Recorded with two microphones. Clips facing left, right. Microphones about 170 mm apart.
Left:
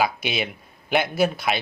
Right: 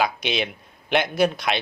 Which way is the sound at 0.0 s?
5° left (ahead or behind).